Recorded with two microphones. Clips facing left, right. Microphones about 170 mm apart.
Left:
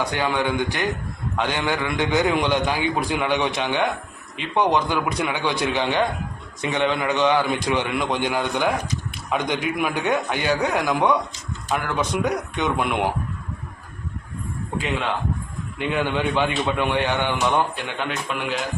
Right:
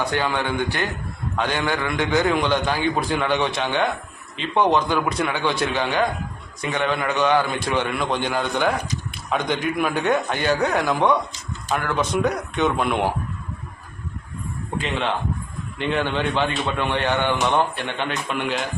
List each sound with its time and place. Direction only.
0.1 s a man's voice: 15° left (ahead or behind)
12.1 s a man's voice: 15° left (ahead or behind)
15.8 s a man's voice: 10° left (ahead or behind)